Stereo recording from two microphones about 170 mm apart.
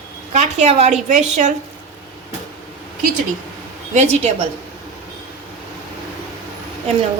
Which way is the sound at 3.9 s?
40° right (ahead or behind).